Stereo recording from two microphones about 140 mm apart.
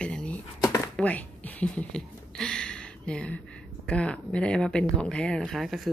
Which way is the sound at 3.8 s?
5° left (ahead or behind).